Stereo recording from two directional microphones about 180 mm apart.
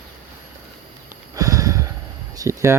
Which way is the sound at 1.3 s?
15° right (ahead or behind).